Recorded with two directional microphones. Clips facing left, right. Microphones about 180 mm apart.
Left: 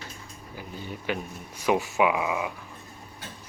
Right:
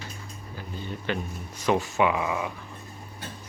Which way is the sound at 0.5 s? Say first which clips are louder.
Right 1 dB; 10° left (ahead or behind).